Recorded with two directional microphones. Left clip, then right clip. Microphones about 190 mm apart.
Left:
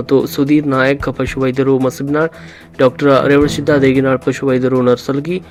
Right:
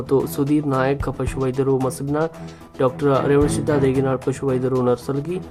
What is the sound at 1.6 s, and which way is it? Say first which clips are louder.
Speech: left 7 dB; 15° left (ahead or behind).